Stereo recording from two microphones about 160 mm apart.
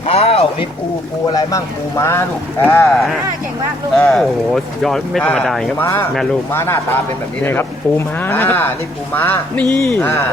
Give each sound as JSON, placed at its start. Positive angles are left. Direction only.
{"t": 0.1, "sound": "speech", "side_deg": 40}
{"t": 1.3, "sound": "speech", "side_deg": 20}
{"t": 3.9, "sound": "speech", "side_deg": 0}
{"t": 5.8, "sound": "speech", "side_deg": 15}